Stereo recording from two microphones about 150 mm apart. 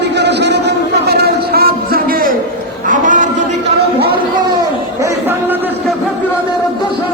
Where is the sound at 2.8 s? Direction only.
60° right (ahead or behind).